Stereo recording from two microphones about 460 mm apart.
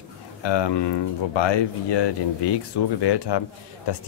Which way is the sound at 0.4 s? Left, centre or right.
Left.